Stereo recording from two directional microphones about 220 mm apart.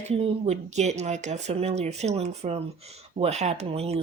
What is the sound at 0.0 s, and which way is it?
Speech, 30° right (ahead or behind).